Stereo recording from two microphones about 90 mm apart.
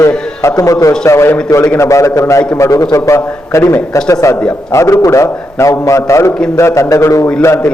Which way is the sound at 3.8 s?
10° left (ahead or behind).